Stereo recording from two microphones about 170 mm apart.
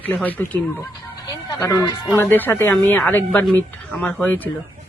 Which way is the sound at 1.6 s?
20° left (ahead or behind).